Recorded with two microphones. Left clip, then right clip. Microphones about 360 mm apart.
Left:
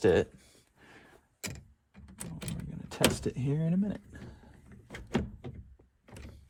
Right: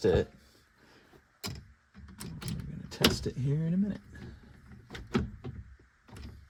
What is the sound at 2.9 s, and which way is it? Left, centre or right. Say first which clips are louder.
Door: right 1 dB; left.